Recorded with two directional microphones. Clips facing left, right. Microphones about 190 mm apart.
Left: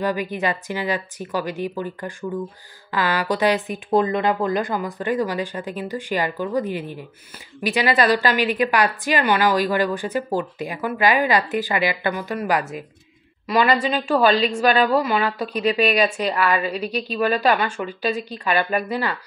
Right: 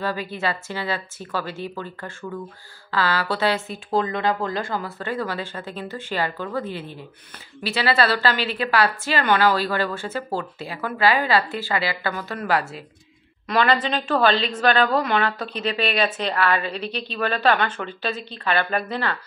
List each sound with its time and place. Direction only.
0.0 s a woman's voice: 15° left (ahead or behind)